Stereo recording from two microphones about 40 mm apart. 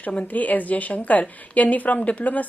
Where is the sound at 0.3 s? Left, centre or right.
Left.